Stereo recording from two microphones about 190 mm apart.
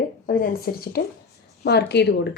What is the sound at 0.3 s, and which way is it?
A woman's voice, 50° left (ahead or behind).